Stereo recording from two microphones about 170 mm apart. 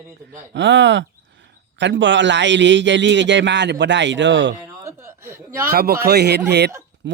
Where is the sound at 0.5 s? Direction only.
90° right.